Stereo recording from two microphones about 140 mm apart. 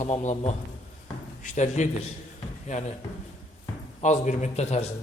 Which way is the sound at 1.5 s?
55° left (ahead or behind).